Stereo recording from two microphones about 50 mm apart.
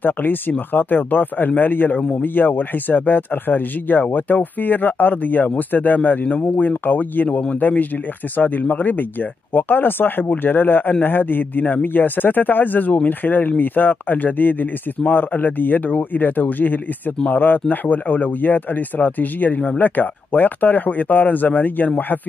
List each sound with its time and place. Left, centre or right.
0.0 s a man's voice: left